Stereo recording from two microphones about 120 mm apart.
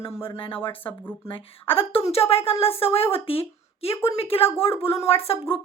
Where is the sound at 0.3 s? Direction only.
50° left (ahead or behind).